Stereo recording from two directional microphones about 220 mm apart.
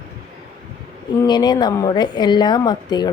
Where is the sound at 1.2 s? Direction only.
20° left (ahead or behind).